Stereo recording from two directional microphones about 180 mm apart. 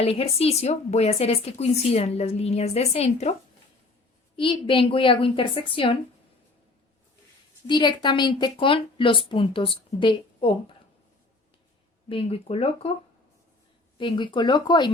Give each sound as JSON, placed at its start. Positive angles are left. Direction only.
{"t": 0.0, "sound": "a woman's voice", "side_deg": 35}
{"t": 4.4, "sound": "a woman's voice", "side_deg": 30}
{"t": 7.7, "sound": "a woman's voice", "side_deg": 25}
{"t": 12.0, "sound": "a woman's voice", "side_deg": 30}
{"t": 14.0, "sound": "a woman's voice", "side_deg": 25}